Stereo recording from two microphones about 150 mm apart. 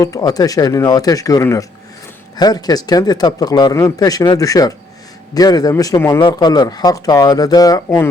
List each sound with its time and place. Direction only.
0.0 s a man's voice: 25° left (ahead or behind)